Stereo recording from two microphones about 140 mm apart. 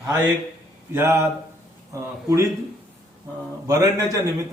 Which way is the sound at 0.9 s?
15° right (ahead or behind).